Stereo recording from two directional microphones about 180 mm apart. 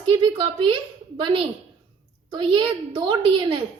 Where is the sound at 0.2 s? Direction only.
25° right (ahead or behind).